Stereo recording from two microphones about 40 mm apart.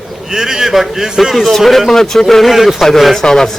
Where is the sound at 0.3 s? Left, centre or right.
Centre.